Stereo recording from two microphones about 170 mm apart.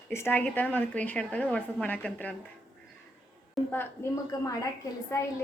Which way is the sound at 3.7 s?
15° left (ahead or behind).